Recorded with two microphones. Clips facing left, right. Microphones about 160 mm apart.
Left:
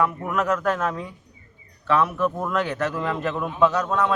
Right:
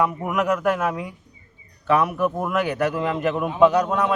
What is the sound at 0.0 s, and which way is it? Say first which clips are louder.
Speech: right 1 dB; 15° right (ahead or behind).